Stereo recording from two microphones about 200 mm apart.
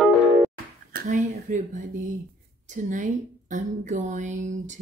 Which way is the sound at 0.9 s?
40° right (ahead or behind).